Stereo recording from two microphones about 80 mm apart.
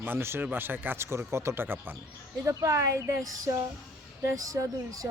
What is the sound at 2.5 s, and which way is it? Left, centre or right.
Speech, right.